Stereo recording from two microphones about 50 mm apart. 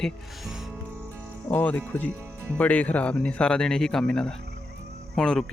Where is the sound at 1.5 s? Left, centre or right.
Left.